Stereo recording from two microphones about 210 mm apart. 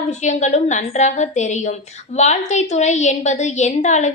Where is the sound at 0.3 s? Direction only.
35° left (ahead or behind).